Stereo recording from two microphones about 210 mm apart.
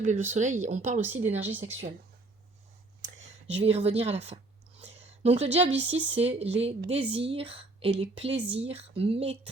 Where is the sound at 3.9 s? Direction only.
30° right (ahead or behind).